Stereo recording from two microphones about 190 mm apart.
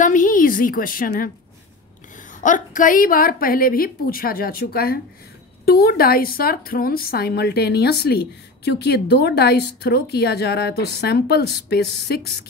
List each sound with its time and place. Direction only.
0.0 s a woman's voice: 45° left (ahead or behind)